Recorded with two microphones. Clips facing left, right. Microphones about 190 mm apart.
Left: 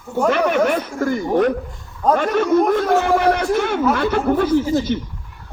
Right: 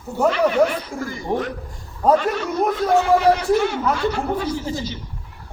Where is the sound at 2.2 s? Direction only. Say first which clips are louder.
Left 6 dB; 55° left (ahead or behind).